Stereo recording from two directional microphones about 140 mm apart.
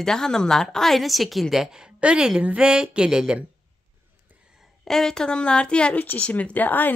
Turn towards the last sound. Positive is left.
turn(degrees=15)  # may be behind; listen again after turning